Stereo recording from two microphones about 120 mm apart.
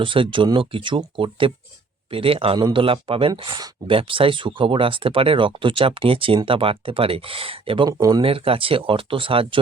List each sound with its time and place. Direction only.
0.0 s speech: 45° right (ahead or behind)
7.9 s speech: 35° right (ahead or behind)